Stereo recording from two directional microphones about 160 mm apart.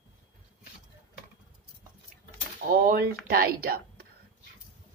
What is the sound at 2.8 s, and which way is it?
A woman's voice, 75° right (ahead or behind).